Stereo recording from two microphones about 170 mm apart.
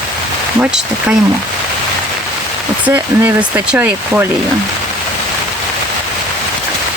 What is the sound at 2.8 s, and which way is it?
Speech, 10° right (ahead or behind).